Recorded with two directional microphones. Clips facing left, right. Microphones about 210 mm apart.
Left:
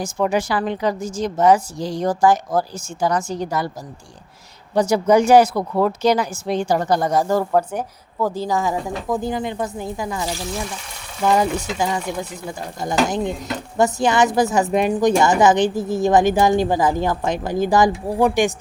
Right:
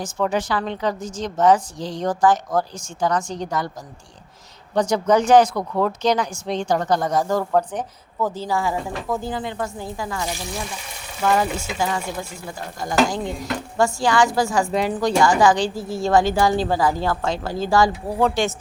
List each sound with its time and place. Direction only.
0.0 s speech: 10° left (ahead or behind)
4.7 s speech: 10° left (ahead or behind)
12.5 s stir: 20° left (ahead or behind)